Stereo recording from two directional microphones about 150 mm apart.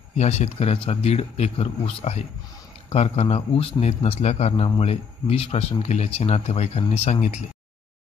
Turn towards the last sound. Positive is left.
turn(degrees=45)  # may be behind; listen again after turning